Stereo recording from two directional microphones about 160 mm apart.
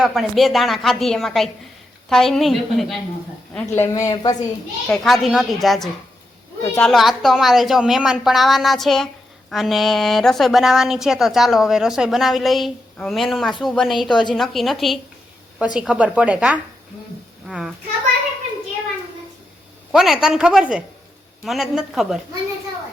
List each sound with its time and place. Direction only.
0.0 s a woman's voice: centre (ahead or behind)
3.7 s speech: 20° left (ahead or behind)
4.9 s a woman's voice: centre (ahead or behind)
19.9 s a woman's voice: centre (ahead or behind)